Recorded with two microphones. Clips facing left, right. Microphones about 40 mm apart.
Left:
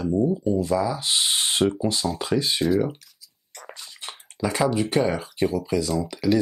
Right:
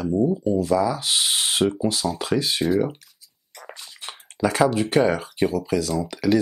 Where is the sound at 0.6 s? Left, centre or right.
Centre.